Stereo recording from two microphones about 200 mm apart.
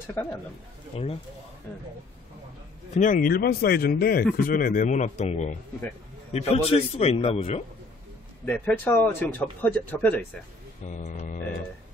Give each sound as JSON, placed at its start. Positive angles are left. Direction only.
{"t": 0.1, "sound": "speech", "side_deg": 15}
{"t": 0.9, "sound": "speech", "side_deg": 30}
{"t": 2.9, "sound": "a man's voice", "side_deg": 40}
{"t": 8.5, "sound": "speech", "side_deg": 5}
{"t": 10.9, "sound": "a man's voice", "side_deg": 40}